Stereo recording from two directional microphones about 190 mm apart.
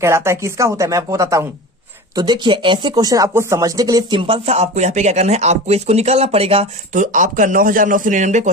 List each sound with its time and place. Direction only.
0.0 s speech: 15° right (ahead or behind); by 8.4 s 40° right (ahead or behind)